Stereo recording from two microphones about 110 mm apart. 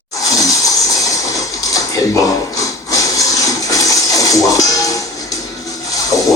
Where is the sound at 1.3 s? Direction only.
30° left (ahead or behind).